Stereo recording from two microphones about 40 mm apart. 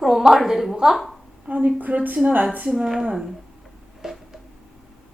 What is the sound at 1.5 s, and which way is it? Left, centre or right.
Speech, right.